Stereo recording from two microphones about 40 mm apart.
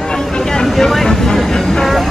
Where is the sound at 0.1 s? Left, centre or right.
Centre.